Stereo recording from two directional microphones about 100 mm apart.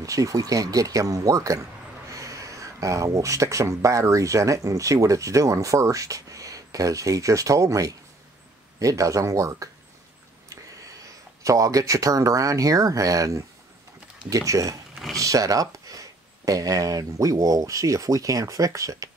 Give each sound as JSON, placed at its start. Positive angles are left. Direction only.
{"t": 0.0, "sound": "speech", "side_deg": -35}